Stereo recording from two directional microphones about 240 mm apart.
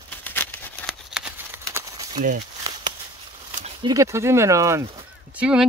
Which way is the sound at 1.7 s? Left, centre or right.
Centre.